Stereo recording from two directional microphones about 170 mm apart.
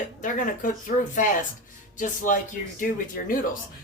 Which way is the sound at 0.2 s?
50° left (ahead or behind).